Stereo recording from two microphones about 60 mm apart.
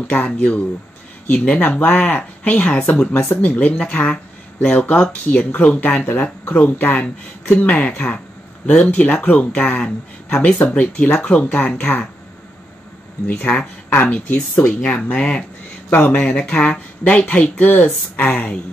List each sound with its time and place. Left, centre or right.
0.3 s speech: left
10.7 s speech: centre
13.3 s speech: left
15.1 s speech: centre